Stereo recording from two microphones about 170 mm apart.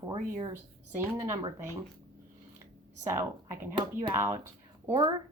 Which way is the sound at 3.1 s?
15° right (ahead or behind).